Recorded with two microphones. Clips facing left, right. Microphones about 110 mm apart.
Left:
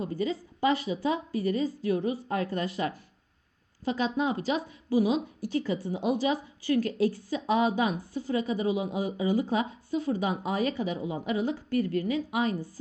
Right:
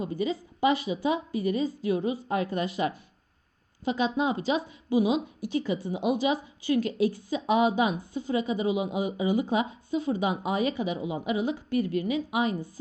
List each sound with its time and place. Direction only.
0.0 s speech: 20° right (ahead or behind)